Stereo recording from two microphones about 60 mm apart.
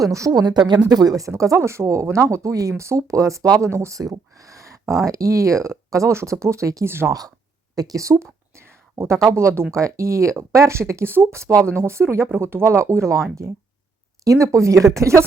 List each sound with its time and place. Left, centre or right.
0.0 s speech: right
0.9 s speech: right
1.3 s speech: right
3.7 s speech: right
3.9 s speech: right
6.8 s speech: right
7.1 s speech: right
7.8 s a woman's voice: right
14.3 s speech: right